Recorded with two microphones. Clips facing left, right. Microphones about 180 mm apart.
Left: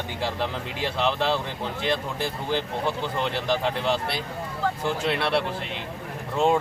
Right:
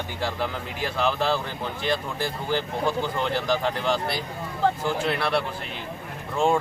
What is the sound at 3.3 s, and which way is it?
Speech, 25° left (ahead or behind).